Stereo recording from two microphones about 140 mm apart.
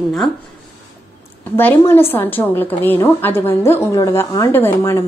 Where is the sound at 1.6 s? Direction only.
15° left (ahead or behind).